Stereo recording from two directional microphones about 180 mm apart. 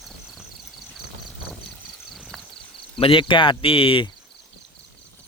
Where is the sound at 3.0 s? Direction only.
30° left (ahead or behind).